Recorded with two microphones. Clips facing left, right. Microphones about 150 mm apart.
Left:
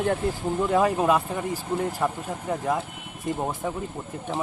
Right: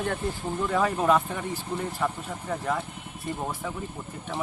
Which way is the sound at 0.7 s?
10° left (ahead or behind).